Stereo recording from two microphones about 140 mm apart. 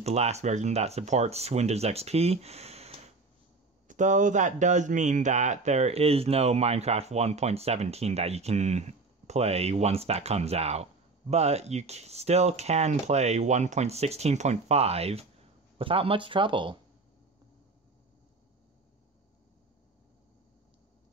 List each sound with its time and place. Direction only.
0.0 s speech: 50° right (ahead or behind)
3.8 s speech: 65° right (ahead or behind); by 16.7 s 35° right (ahead or behind)